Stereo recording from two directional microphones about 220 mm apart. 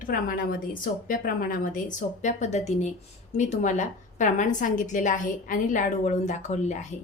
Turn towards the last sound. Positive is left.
turn(degrees=30)  # may be behind; listen again after turning